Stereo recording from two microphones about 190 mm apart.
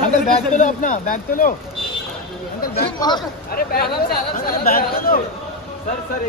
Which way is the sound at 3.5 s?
55° left (ahead or behind).